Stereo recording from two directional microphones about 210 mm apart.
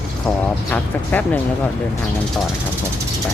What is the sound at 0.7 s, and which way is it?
Speech, 10° left (ahead or behind).